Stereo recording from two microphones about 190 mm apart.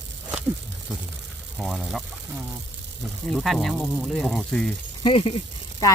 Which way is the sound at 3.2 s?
Centre (ahead or behind).